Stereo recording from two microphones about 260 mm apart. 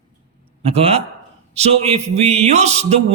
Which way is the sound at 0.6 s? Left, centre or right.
Right.